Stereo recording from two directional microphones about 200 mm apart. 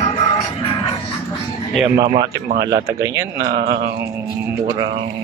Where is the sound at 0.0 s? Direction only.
30° left (ahead or behind).